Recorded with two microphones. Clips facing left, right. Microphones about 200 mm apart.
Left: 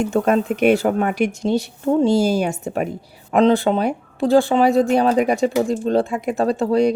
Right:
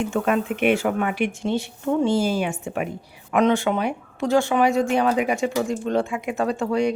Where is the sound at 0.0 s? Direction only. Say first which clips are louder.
Left 4 dB; 40° left (ahead or behind).